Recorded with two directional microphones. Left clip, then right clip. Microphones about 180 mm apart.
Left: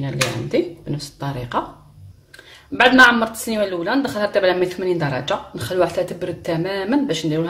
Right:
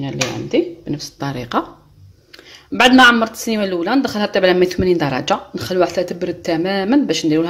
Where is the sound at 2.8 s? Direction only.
35° right (ahead or behind).